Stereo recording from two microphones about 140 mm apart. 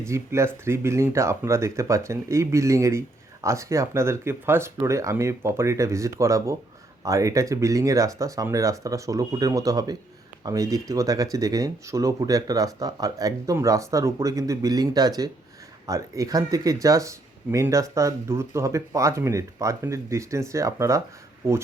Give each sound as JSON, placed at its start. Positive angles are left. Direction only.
{"t": 0.1, "sound": "speech", "side_deg": -20}